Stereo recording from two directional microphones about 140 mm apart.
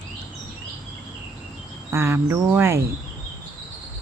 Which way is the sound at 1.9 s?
20° right (ahead or behind).